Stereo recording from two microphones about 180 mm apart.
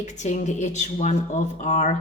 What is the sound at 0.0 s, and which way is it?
A woman's voice, 40° left (ahead or behind).